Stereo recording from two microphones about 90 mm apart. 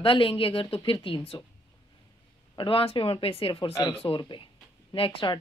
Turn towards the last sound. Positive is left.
turn(degrees=85)